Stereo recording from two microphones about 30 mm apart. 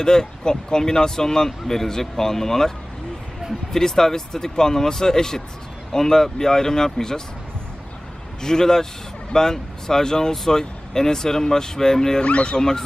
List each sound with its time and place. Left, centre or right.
0.0 s speech: left
3.7 s speech: centre
8.4 s speech: left
12.2 s speech: left
12.5 s speech: centre